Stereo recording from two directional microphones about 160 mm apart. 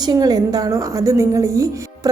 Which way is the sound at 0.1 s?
25° right (ahead or behind).